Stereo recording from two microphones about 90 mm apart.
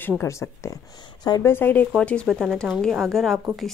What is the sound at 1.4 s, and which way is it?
A woman's voice, 25° left (ahead or behind).